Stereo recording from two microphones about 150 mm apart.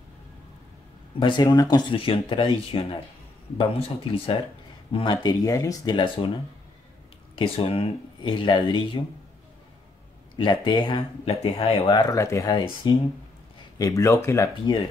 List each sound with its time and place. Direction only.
1.2 s speech: 30° left (ahead or behind)
7.3 s speech: 40° left (ahead or behind)
10.3 s speech: 30° left (ahead or behind)
13.7 s speech: 20° left (ahead or behind)